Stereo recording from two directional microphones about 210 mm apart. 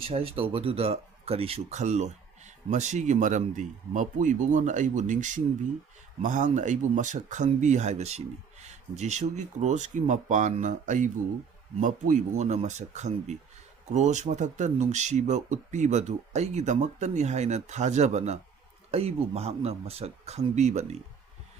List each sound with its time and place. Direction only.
0.1 s speech: 25° right (ahead or behind)